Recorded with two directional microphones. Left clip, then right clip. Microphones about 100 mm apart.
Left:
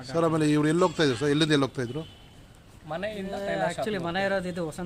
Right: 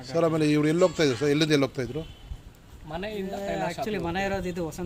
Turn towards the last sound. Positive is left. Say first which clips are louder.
# left 1 dB
turn(degrees=25)  # may be behind; listen again after turning